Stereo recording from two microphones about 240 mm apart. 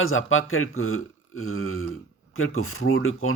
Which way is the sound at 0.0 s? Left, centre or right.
Left.